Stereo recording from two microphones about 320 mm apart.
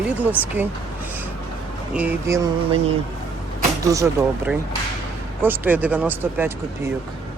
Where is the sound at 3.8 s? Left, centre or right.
Centre.